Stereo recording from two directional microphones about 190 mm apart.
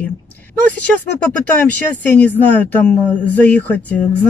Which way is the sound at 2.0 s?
10° left (ahead or behind).